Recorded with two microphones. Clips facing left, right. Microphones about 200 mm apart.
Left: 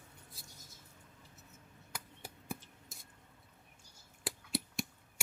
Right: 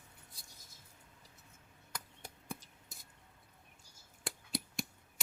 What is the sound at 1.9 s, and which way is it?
Chop, 5° left (ahead or behind).